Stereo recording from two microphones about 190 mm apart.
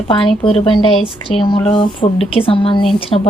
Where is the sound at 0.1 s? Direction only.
30° left (ahead or behind).